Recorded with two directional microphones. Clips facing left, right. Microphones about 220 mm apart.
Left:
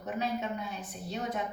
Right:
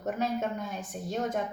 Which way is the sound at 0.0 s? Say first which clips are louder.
Right 3 dB; 45° right (ahead or behind).